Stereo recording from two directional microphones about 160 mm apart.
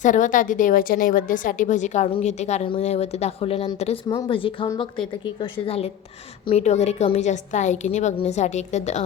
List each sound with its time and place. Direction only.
0.0 s a woman's voice: 55° left (ahead or behind)